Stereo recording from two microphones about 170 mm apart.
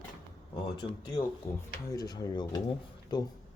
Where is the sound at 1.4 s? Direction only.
15° left (ahead or behind).